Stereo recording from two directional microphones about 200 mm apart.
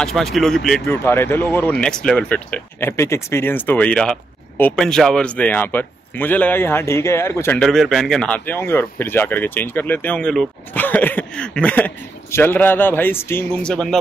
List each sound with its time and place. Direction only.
0.0 s speech: centre (ahead or behind)